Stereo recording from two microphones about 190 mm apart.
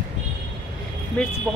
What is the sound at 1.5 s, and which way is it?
Speech, 5° right (ahead or behind).